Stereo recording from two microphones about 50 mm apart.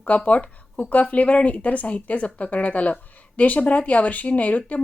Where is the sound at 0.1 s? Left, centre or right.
Left.